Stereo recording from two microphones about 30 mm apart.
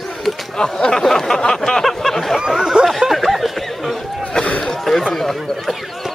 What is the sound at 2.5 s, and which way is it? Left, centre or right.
Speech, centre.